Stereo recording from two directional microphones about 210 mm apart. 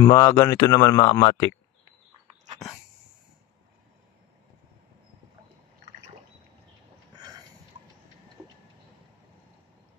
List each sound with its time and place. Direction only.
0.0 s speech: 15° left (ahead or behind)